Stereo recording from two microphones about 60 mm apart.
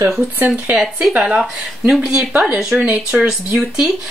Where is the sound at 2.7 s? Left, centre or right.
Right.